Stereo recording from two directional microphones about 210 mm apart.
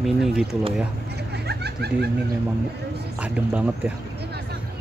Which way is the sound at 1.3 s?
50° right (ahead or behind).